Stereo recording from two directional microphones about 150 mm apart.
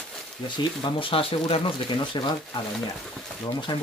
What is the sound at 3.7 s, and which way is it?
Speech, 30° left (ahead or behind).